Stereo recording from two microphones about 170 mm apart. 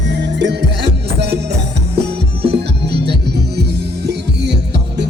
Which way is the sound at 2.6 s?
80° right.